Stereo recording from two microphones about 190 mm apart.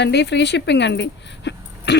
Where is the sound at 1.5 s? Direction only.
65° left (ahead or behind).